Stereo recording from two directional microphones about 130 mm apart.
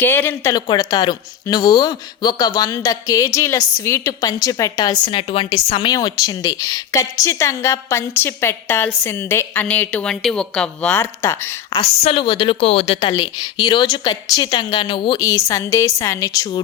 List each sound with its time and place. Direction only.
0.0 s a woman's voice: 15° left (ahead or behind)
0.5 s speech: 30° left (ahead or behind)
5.9 s a woman's voice: 30° left (ahead or behind)
12.2 s speech: 35° left (ahead or behind)
13.1 s a woman's voice: 35° left (ahead or behind)